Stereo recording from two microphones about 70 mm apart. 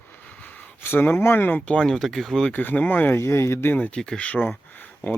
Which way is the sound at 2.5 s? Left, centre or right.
Left.